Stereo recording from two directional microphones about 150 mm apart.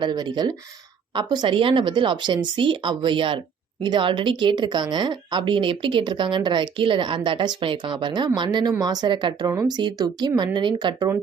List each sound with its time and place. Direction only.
0.0 s a woman's voice: 30° right (ahead or behind)